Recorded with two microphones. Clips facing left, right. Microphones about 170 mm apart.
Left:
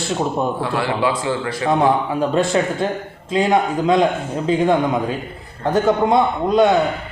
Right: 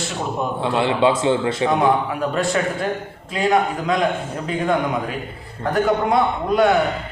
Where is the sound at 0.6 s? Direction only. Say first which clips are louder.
Right 2 dB; 25° right (ahead or behind).